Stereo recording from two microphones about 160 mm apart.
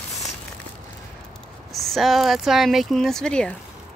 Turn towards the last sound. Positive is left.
turn(degrees=5)  # may be behind; listen again after turning